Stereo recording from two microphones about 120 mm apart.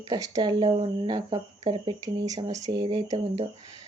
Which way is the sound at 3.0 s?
50° right (ahead or behind).